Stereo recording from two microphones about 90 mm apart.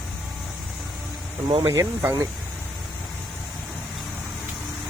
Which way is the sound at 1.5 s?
70° right (ahead or behind).